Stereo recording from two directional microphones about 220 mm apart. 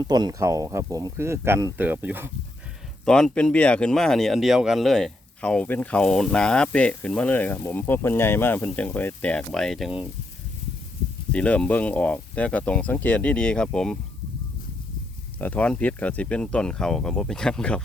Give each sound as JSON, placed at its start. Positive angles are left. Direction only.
{"t": 0.0, "sound": "speech", "side_deg": -20}
{"t": 3.1, "sound": "speech", "side_deg": 5}
{"t": 11.3, "sound": "speech", "side_deg": 5}
{"t": 15.4, "sound": "speech", "side_deg": 5}